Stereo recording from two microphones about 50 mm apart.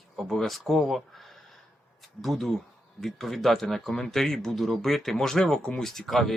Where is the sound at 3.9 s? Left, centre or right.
Centre.